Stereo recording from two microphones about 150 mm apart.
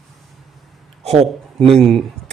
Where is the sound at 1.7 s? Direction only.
Centre (ahead or behind).